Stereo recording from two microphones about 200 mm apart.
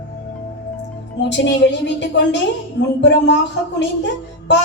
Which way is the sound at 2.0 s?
60° left (ahead or behind).